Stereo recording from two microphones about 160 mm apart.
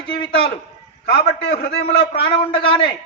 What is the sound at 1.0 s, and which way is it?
Speech, 90° left.